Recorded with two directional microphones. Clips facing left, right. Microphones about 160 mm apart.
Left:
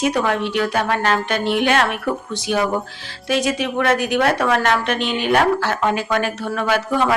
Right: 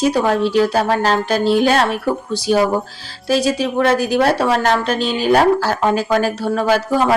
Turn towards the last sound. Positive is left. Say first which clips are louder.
# right 3 dB
turn(degrees=-35)  # may be behind; listen again after turning